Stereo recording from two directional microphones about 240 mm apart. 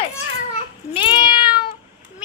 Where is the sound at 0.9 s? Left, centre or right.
Left.